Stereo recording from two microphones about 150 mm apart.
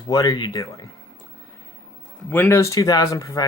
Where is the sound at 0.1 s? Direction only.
25° left (ahead or behind).